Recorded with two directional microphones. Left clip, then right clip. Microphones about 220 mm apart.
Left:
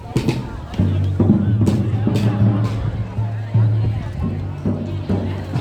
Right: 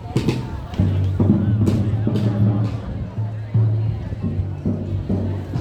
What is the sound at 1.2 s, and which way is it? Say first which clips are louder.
Music: left 2 dB; 50° left (ahead or behind).